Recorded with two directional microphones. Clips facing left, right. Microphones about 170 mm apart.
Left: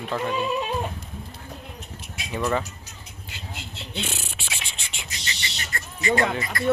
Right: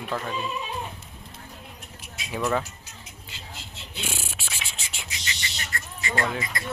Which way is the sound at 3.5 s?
65° left (ahead or behind).